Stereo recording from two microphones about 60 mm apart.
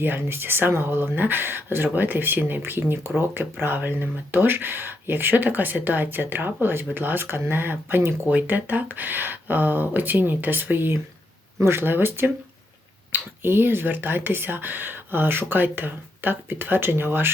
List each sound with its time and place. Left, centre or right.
0.0 s speech: right
8.3 s speech: right